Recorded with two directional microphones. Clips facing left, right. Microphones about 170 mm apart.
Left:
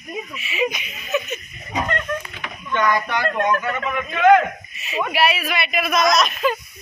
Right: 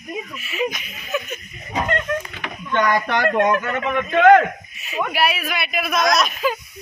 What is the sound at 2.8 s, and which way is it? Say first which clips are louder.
Speech: right 1 dB; 30° right (ahead or behind).